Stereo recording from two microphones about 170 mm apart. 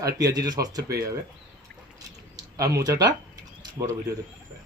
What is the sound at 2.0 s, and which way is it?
Mouse, 20° right (ahead or behind).